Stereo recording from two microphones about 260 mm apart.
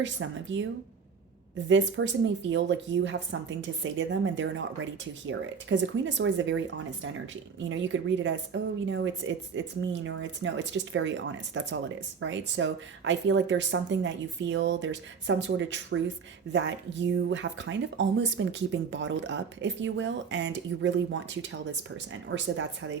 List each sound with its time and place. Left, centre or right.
0.0 s speech: right
7.7 s speech: right